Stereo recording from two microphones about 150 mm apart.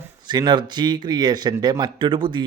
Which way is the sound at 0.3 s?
30° right (ahead or behind).